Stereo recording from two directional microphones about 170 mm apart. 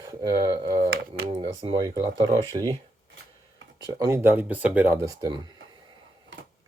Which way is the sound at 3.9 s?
20° right (ahead or behind).